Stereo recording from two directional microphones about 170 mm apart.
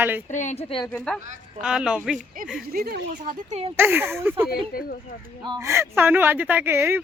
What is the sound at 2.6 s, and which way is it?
Speech, 60° right (ahead or behind).